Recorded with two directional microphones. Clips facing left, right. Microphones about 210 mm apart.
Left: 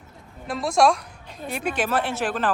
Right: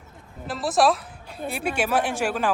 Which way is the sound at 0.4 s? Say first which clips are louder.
Left 1 dB; 5° right (ahead or behind).